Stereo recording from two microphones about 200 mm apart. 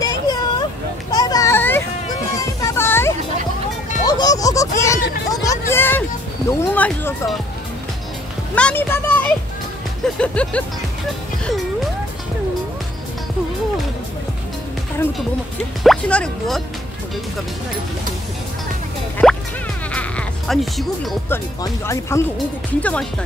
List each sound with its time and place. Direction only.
0.0 s vehicle: 20° left (ahead or behind)
1.1 s a sound: 15° left (ahead or behind)
5.3 s hubbub: 15° left (ahead or behind)
6.5 s speech: 10° left (ahead or behind)
8.5 s speech: 10° left (ahead or behind)
15.8 s speech: 5° left (ahead or behind)
19.9 s speech: 5° left (ahead or behind)
21.8 s speech: 15° left (ahead or behind)